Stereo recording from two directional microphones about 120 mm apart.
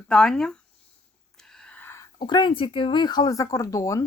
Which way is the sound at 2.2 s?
40° left (ahead or behind).